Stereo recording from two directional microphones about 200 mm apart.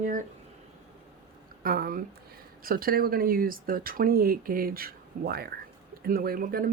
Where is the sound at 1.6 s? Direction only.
50° right (ahead or behind).